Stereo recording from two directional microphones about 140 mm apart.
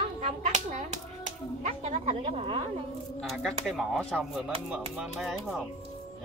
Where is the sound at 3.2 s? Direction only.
Centre (ahead or behind).